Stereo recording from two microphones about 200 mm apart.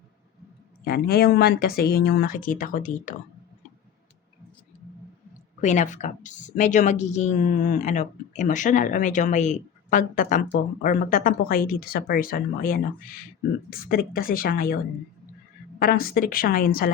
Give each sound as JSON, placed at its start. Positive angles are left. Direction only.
{"t": 0.9, "sound": "speech", "side_deg": 50}
{"t": 5.5, "sound": "a woman's voice", "side_deg": 35}
{"t": 15.8, "sound": "speech", "side_deg": 45}